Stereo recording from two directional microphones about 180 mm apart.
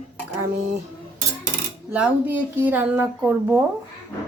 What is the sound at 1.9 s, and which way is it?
Speech, 5° right (ahead or behind).